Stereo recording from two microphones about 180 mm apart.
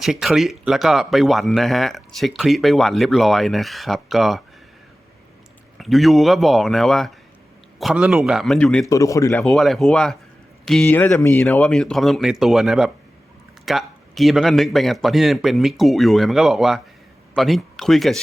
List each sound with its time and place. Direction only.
0.0 s speech: centre (ahead or behind)
5.7 s speech: centre (ahead or behind)
8.9 s speech: 20° left (ahead or behind)
9.4 s speech: centre (ahead or behind)